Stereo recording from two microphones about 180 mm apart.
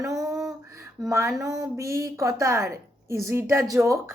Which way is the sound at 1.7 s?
15° right (ahead or behind).